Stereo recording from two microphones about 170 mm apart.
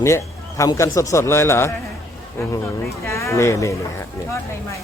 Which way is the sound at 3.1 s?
15° left (ahead or behind).